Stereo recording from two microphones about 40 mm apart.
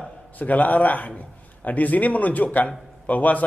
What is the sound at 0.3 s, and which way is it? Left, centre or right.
A man's voice, left.